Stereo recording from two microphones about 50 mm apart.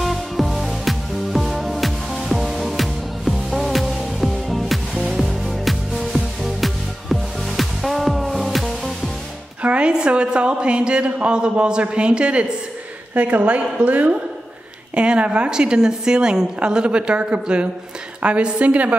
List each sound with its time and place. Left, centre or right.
0.0 s music: centre
9.6 s a woman's voice: right